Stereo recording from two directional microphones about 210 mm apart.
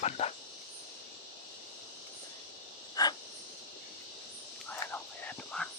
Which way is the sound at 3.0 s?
15° left (ahead or behind).